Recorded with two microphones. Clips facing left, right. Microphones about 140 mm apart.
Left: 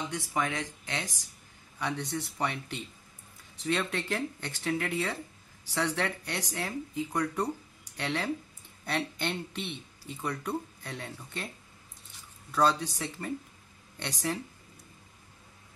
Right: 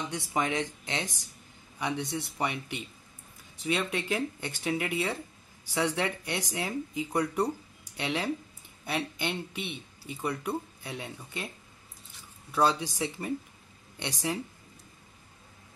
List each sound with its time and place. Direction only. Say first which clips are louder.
0.1 s speech: right 4 dB; 20° right (ahead or behind)
12.5 s speech: even; 10° right (ahead or behind)